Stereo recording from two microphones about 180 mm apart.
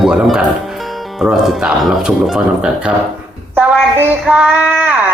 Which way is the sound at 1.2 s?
Centre (ahead or behind).